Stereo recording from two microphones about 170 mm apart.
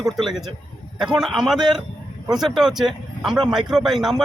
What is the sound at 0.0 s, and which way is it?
Speech, centre (ahead or behind).